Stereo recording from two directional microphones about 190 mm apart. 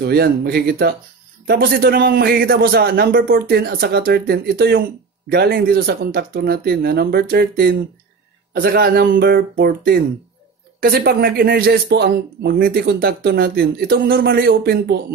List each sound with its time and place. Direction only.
0.0 s speech: 60° right (ahead or behind)